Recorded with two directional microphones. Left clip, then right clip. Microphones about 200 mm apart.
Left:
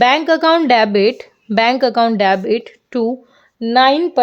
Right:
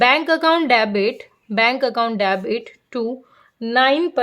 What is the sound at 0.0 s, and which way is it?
A woman's voice, 30° left (ahead or behind).